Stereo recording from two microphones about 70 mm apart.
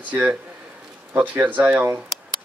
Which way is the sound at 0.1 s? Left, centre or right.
Right.